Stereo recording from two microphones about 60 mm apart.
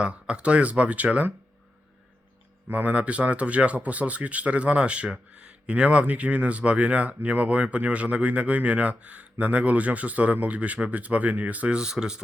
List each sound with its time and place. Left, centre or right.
0.0 s speech: centre
2.6 s speech: right